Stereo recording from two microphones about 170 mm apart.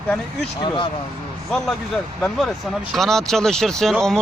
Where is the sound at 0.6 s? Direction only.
30° left (ahead or behind).